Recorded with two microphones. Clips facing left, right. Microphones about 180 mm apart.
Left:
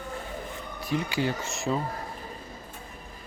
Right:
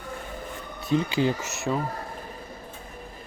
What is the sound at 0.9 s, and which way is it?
Speech, 20° right (ahead or behind).